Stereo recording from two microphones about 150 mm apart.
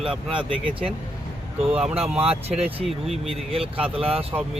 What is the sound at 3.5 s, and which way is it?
Speech, 40° right (ahead or behind).